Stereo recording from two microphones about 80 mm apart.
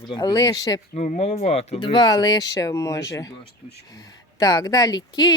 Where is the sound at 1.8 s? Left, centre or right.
Left.